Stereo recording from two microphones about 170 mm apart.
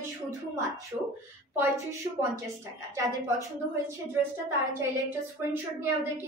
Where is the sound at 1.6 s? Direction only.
15° right (ahead or behind).